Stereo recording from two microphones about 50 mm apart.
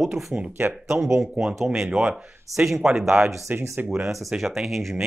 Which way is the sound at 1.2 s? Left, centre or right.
Centre.